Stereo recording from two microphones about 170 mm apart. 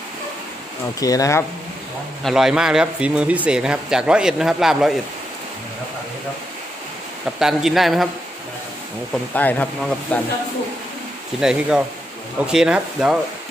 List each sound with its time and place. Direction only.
0.9 s speech: 20° left (ahead or behind)
2.2 s speech: 5° right (ahead or behind)
7.3 s speech: centre (ahead or behind)
9.3 s speech: 10° left (ahead or behind)
11.3 s speech: 5° right (ahead or behind)